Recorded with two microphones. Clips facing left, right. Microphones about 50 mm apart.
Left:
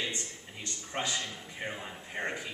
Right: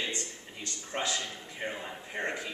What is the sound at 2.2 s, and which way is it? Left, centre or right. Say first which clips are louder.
Speech: right 2 dB; centre.